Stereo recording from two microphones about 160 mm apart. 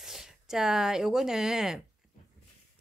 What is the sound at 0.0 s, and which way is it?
Speech, centre (ahead or behind).